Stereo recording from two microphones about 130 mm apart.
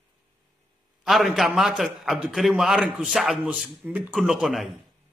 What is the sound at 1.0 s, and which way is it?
A man's voice, centre (ahead or behind).